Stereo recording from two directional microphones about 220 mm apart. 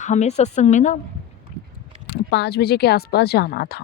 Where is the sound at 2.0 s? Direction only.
50° left (ahead or behind).